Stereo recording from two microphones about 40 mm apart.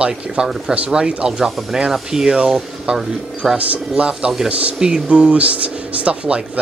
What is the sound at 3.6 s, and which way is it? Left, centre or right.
Speech, right.